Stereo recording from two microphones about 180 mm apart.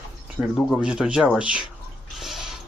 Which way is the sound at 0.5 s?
5° right (ahead or behind).